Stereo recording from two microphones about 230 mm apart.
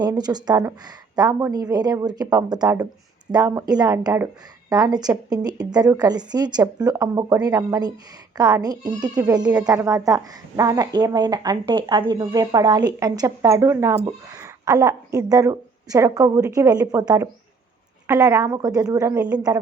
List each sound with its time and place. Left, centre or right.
0.0 s speech: centre